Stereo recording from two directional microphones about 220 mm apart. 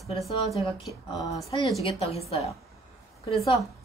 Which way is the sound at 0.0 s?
Centre (ahead or behind).